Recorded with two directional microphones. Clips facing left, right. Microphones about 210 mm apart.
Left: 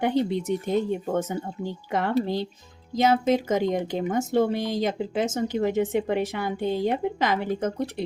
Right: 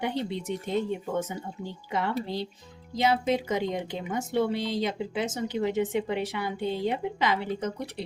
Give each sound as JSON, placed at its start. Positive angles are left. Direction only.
{"t": 0.0, "sound": "speech", "side_deg": 45}